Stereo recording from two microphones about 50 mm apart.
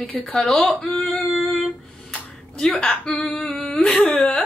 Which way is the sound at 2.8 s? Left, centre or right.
Centre.